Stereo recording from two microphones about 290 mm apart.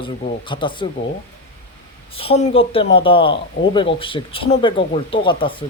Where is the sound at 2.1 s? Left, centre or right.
Centre.